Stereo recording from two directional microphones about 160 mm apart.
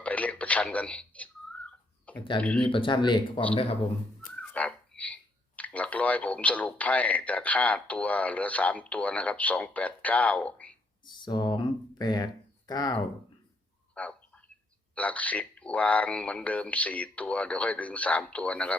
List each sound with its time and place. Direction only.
0.0 s a sound: 10° left (ahead or behind)
2.4 s speech: 10° left (ahead or behind)
2.7 s speech: 30° left (ahead or behind)
4.4 s speech: 10° left (ahead or behind)
11.0 s speech: 30° left (ahead or behind)
13.9 s frog: 10° left (ahead or behind)
14.9 s speech: 10° left (ahead or behind)